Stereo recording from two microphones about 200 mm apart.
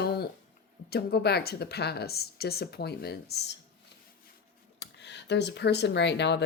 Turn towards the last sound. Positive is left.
turn(degrees=60)  # may be behind; listen again after turning